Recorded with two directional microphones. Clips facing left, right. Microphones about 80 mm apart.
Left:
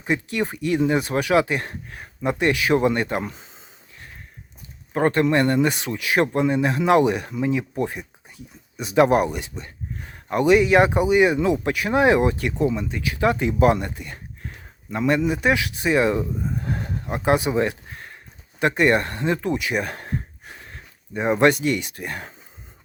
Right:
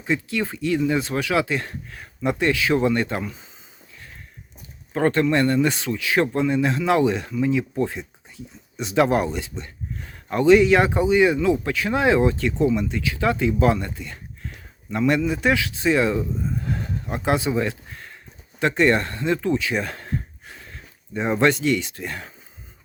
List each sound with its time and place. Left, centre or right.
0.0 s speech: left
4.9 s speech: left
9.0 s speech: centre
9.6 s speech: left
12.5 s speech: left
15.3 s speech: centre
18.6 s speech: centre
21.1 s speech: centre